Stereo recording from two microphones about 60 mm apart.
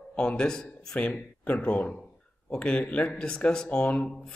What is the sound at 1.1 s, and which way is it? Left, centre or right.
Speech, left.